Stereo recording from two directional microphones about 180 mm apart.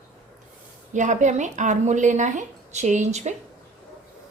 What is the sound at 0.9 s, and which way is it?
Speech, 40° right (ahead or behind).